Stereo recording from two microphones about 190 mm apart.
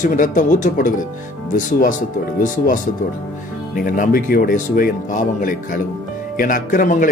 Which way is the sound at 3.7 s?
50° left (ahead or behind).